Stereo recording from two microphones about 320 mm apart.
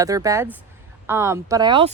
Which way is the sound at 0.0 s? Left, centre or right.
Centre.